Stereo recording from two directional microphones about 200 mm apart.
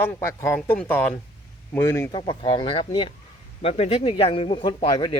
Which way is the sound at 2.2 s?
25° left (ahead or behind).